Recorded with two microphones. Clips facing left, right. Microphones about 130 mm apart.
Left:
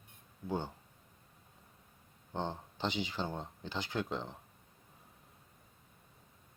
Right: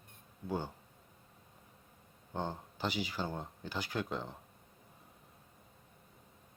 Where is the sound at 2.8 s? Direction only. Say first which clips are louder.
Even; 20° left (ahead or behind).